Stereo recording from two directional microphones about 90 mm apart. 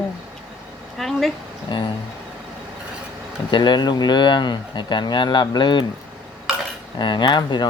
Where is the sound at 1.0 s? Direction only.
5° left (ahead or behind).